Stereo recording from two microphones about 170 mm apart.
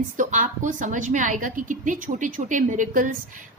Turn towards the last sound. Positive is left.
turn(degrees=-50)  # may be behind; listen again after turning